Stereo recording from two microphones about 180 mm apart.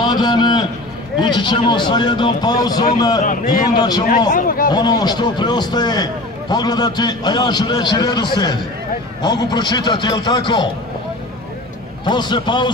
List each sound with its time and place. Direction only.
0.0 s a sound: 25° left (ahead or behind)
1.2 s a man's voice: 25° left (ahead or behind)
4.3 s a man's voice: 50° left (ahead or behind)
4.6 s a man's voice: 20° left (ahead or behind)
12.0 s a man's voice: 25° left (ahead or behind)